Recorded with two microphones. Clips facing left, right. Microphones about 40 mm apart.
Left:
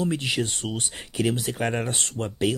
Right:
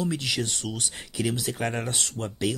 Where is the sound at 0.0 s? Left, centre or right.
Left.